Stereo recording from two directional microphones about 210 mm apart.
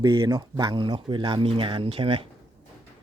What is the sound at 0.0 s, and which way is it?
Speech, 20° right (ahead or behind).